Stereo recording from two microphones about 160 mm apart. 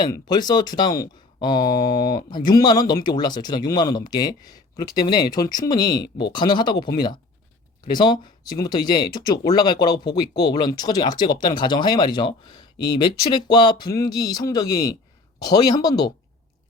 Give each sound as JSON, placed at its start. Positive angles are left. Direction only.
{"t": 0.0, "sound": "speech", "side_deg": 25}